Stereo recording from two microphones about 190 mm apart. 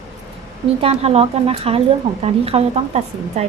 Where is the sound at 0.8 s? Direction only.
30° right (ahead or behind).